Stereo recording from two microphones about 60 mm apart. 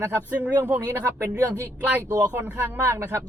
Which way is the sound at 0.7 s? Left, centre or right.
Right.